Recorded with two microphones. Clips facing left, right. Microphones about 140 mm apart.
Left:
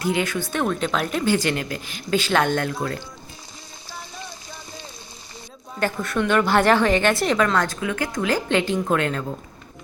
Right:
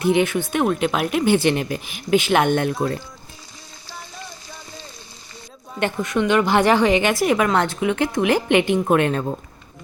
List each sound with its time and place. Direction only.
0.0 s speech: 20° right (ahead or behind)
0.6 s a woman's voice: 10° right (ahead or behind)
5.8 s a woman's voice: 15° right (ahead or behind)